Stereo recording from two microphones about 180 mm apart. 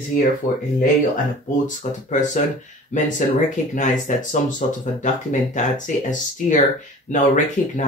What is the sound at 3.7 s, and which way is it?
Speech, 45° left (ahead or behind).